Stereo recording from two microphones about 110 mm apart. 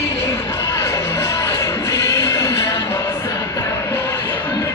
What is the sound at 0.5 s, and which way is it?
Music, 25° left (ahead or behind).